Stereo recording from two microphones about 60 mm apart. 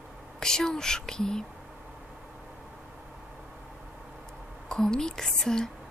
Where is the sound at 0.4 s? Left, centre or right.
Centre.